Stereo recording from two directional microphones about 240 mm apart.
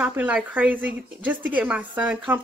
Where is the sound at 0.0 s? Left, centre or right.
Centre.